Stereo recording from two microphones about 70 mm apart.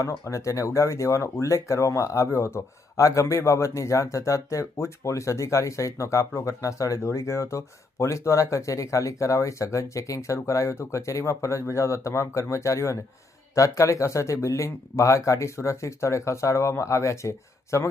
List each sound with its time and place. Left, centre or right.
0.0 s speech: left